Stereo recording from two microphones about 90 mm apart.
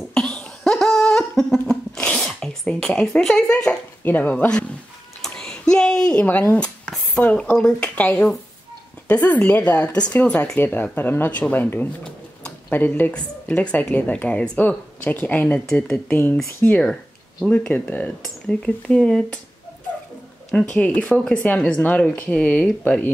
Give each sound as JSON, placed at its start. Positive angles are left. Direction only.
{"t": 0.1, "sound": "cough", "side_deg": 10}
{"t": 4.0, "sound": "a woman's voice", "side_deg": 15}
{"t": 5.2, "sound": "a sound", "side_deg": 5}
{"t": 6.2, "sound": "a woman's voice", "side_deg": 20}
{"t": 12.0, "sound": "a sound", "side_deg": 10}
{"t": 12.7, "sound": "a woman's voice", "side_deg": 20}
{"t": 15.0, "sound": "a woman's voice", "side_deg": 20}
{"t": 18.9, "sound": "a woman's voice", "side_deg": 5}
{"t": 20.5, "sound": "a woman's voice", "side_deg": 15}